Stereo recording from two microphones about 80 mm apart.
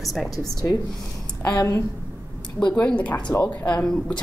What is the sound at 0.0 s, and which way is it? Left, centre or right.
Speech, centre.